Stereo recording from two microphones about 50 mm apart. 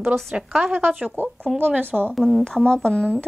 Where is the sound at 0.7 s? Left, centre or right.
Right.